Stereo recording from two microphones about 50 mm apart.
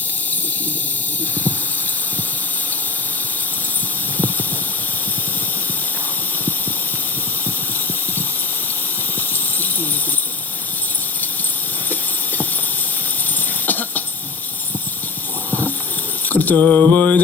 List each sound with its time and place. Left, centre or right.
11.9 s a sound: left
13.7 s cough: left
16.3 s mantra: left